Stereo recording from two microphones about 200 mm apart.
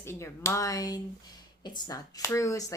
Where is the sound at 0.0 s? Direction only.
15° left (ahead or behind).